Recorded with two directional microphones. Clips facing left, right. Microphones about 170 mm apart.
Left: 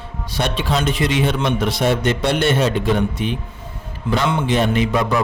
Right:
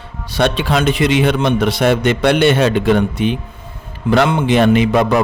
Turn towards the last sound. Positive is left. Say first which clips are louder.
# right 6 dB
turn(degrees=-70)  # may be behind; listen again after turning